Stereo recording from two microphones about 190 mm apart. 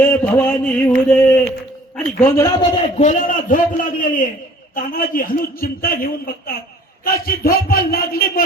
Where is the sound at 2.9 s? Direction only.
40° left (ahead or behind).